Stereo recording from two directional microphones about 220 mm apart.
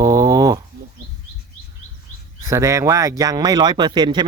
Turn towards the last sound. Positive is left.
turn(degrees=-20)  # may be behind; listen again after turning